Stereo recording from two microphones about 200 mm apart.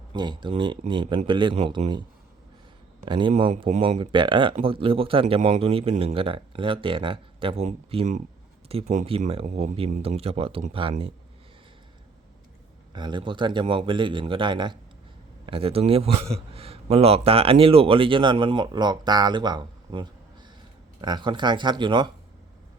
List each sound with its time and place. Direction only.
0.1 s a man's voice: 20° right (ahead or behind)
3.1 s a man's voice: 25° right (ahead or behind)
12.9 s a man's voice: 20° right (ahead or behind)